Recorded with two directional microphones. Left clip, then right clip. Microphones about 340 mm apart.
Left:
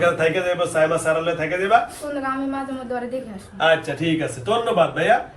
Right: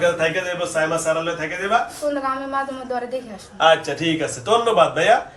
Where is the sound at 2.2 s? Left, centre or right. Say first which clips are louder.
Right 2 dB; centre.